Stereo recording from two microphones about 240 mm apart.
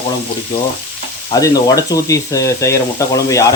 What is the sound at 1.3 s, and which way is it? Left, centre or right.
Speech, centre.